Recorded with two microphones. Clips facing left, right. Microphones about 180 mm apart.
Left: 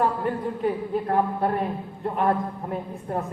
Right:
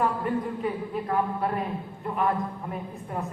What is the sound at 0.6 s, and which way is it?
A woman's voice, 40° left (ahead or behind).